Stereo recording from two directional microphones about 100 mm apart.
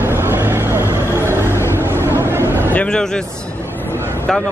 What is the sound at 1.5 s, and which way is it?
Vehicle, 25° left (ahead or behind).